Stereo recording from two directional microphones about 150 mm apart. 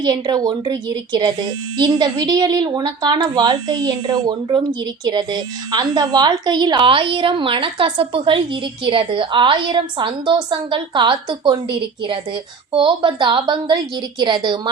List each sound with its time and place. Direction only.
0.0 s a woman's voice: 25° right (ahead or behind)